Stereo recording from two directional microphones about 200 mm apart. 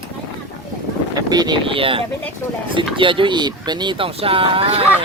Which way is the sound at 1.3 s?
20° right (ahead or behind).